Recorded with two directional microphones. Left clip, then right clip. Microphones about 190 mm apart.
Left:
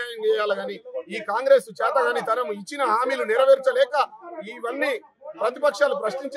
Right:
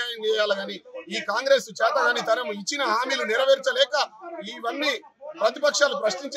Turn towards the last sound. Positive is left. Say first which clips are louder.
# even
turn(degrees=25)  # may be behind; listen again after turning